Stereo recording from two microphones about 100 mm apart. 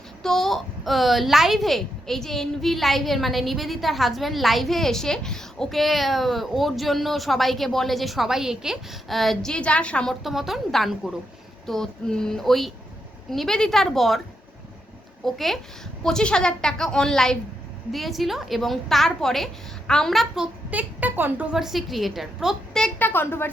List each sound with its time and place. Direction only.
0.2 s a woman's voice: 5° left (ahead or behind)
10.2 s a woman's voice: 5° right (ahead or behind)
15.2 s a woman's voice: centre (ahead or behind)
20.7 s a woman's voice: 15° right (ahead or behind)
21.5 s a woman's voice: 5° right (ahead or behind)
23.0 s a woman's voice: 20° left (ahead or behind)